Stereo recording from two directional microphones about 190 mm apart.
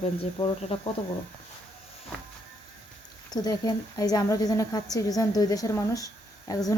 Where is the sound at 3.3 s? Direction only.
20° left (ahead or behind).